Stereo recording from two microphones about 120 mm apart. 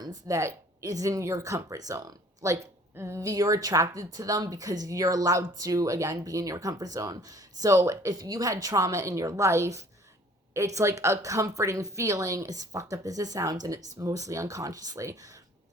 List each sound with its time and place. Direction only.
0.3 s speech: 25° right (ahead or behind)